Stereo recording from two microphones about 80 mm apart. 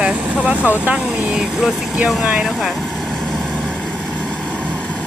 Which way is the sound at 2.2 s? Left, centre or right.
Centre.